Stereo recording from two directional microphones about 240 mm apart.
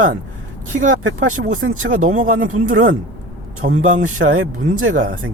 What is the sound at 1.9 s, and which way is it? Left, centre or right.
Speech, right.